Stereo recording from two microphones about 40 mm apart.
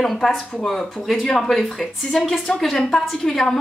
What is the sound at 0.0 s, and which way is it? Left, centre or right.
A woman's voice, centre.